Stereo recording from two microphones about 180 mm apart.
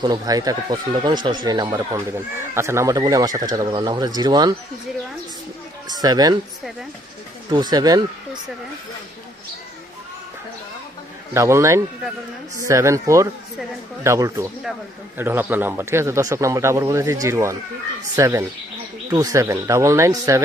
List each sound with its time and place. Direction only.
0.0 s speech: 20° right (ahead or behind)
5.9 s speech: 20° right (ahead or behind)
7.5 s speech: 20° right (ahead or behind)
11.3 s a man's voice: 15° right (ahead or behind)